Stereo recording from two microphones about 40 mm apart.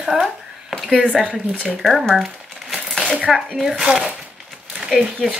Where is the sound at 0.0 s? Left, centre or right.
Centre.